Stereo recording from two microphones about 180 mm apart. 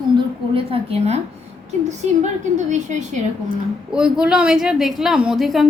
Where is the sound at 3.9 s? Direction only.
5° right (ahead or behind).